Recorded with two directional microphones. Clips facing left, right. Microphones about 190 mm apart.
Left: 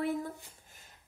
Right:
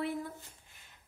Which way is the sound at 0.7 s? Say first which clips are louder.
Left 3 dB; 45° left (ahead or behind).